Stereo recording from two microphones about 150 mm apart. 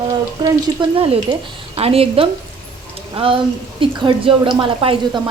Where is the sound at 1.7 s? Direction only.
40° right (ahead or behind).